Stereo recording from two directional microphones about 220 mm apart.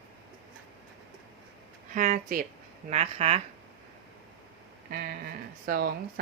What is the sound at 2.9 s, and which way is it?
Speech, 30° right (ahead or behind).